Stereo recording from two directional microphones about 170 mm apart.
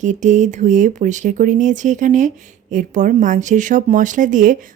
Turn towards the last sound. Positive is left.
turn(degrees=-50)  # may be behind; listen again after turning